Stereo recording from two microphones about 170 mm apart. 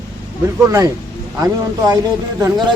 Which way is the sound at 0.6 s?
20° right (ahead or behind).